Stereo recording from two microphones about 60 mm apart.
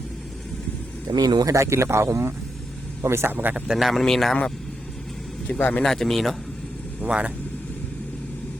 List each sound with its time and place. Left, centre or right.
1.1 s speech: right
3.7 s speech: centre
5.5 s a man's voice: left
5.8 s speech: centre
7.0 s speech: right